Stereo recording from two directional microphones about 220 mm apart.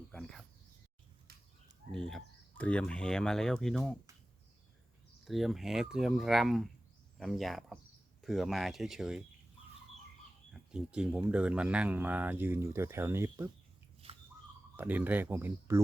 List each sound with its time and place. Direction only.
0.1 s a sound: centre (ahead or behind)
1.3 s fowl: 45° right (ahead or behind)
1.9 s speech: centre (ahead or behind)
5.2 s speech: centre (ahead or behind)
10.5 s speech: 5° right (ahead or behind)
14.0 s a sound: 25° right (ahead or behind)
14.8 s speech: 10° right (ahead or behind)